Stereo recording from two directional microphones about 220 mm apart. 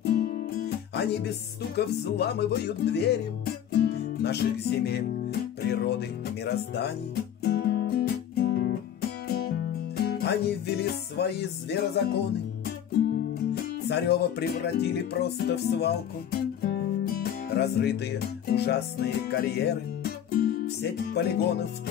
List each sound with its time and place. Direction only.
0.0 s music: 45° left (ahead or behind)
9.9 s music: 45° left (ahead or behind)
13.8 s music: 50° left (ahead or behind)